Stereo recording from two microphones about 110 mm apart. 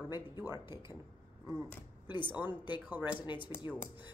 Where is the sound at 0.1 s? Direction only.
40° left (ahead or behind).